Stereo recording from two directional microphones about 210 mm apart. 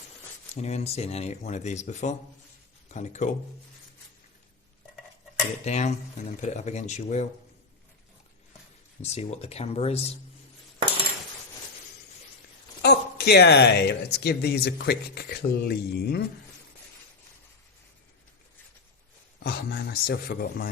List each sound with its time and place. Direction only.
0.5 s speech: 30° left (ahead or behind)
5.6 s speech: 35° left (ahead or behind)
9.0 s speech: 30° left (ahead or behind)
12.8 s speech: 50° left (ahead or behind)
19.4 s speech: 50° left (ahead or behind)